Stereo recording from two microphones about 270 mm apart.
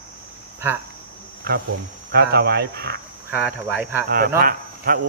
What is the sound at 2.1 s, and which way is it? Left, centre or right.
Speech, right.